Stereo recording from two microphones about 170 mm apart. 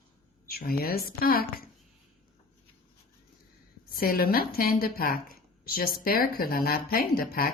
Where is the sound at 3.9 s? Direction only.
60° left (ahead or behind).